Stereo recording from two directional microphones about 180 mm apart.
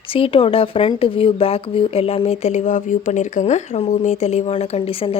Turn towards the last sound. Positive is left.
turn(degrees=30)  # may be behind; listen again after turning